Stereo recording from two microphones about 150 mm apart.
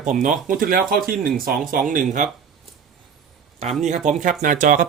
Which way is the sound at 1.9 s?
60° right (ahead or behind).